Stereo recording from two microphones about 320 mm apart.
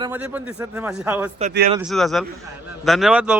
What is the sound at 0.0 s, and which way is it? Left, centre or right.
A man's voice, centre.